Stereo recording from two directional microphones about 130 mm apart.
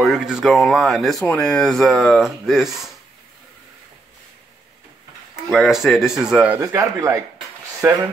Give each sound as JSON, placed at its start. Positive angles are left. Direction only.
{"t": 0.0, "sound": "speech", "side_deg": -5}
{"t": 5.3, "sound": "speech", "side_deg": -5}
{"t": 6.6, "sound": "speech", "side_deg": -25}